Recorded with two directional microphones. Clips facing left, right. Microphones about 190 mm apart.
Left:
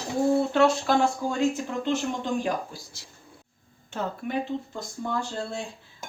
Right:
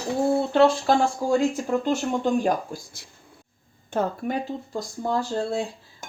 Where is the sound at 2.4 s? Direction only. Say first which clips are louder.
Right 4 dB; 50° right (ahead or behind).